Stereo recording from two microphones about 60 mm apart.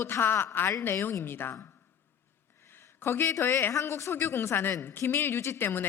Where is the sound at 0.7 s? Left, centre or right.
Left.